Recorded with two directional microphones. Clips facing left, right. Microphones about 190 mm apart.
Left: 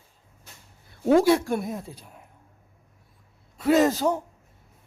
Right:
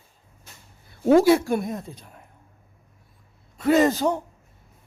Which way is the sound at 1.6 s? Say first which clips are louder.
Right 2 dB; 5° left (ahead or behind).